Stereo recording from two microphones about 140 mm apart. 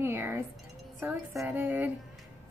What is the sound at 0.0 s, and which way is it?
Wind chime, 15° right (ahead or behind).